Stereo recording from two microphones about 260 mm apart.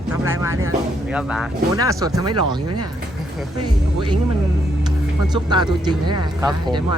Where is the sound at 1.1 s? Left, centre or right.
Centre.